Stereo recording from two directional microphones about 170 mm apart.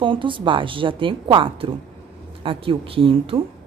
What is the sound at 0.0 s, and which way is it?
A woman's voice, 30° right (ahead or behind).